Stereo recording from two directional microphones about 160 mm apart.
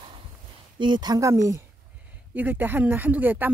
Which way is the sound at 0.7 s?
30° right (ahead or behind).